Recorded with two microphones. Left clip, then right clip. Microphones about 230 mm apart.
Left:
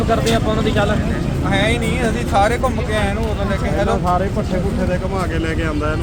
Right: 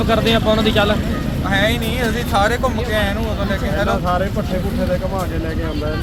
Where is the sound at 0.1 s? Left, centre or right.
Right.